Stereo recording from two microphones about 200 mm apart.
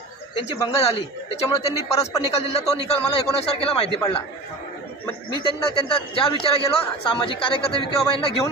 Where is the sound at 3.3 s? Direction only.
30° left (ahead or behind).